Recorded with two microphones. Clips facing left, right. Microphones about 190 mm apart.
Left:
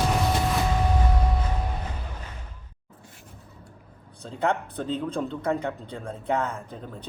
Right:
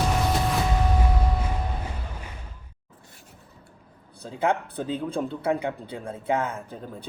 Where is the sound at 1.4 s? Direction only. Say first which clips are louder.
Even; 10° right (ahead or behind).